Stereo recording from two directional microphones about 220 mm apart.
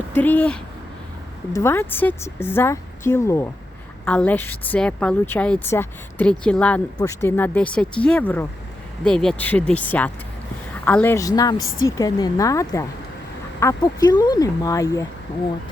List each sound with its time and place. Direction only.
0.1 s speech: 5° left (ahead or behind)
11.6 s a woman's voice: 65° left (ahead or behind)
11.9 s speech: 15° left (ahead or behind)